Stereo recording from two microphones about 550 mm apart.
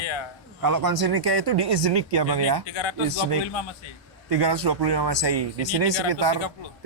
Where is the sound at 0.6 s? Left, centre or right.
Right.